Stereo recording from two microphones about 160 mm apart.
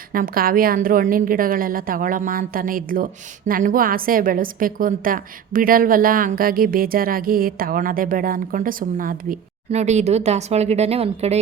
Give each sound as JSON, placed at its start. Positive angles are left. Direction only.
{"t": 0.1, "sound": "a woman's voice", "side_deg": -65}
{"t": 9.7, "sound": "speech", "side_deg": -45}